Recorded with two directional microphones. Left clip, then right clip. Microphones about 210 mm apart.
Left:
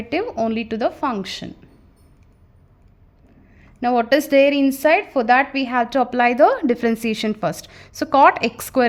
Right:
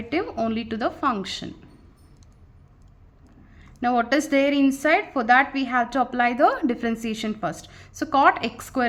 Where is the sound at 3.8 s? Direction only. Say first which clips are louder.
Left 4 dB; 25° left (ahead or behind).